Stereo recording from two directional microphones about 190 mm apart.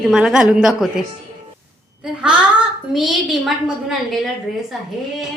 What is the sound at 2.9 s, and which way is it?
A woman's voice, centre (ahead or behind).